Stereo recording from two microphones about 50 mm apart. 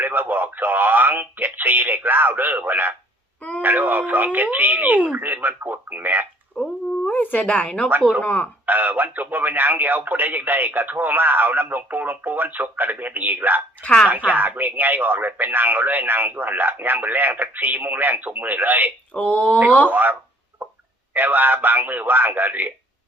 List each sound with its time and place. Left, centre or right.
0.0 s speech: right
5.2 s speech: right
6.5 s dog: centre
7.1 s speech: left
8.6 s speech: right
19.1 s speech: left
19.9 s speech: right